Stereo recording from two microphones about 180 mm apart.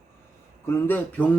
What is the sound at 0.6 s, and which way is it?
Speech, 10° left (ahead or behind).